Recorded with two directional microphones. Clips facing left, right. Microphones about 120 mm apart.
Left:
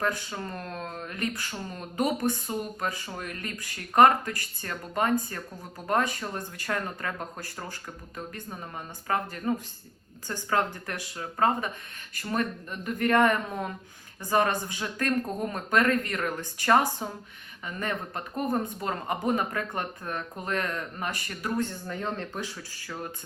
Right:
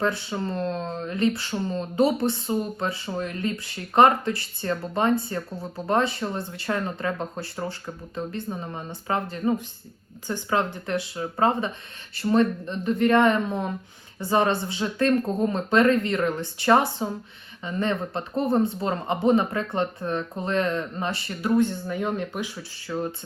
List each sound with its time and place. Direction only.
0.0 s speech: 20° right (ahead or behind)